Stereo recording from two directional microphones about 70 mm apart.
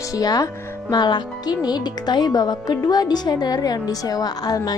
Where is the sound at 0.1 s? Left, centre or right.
Left.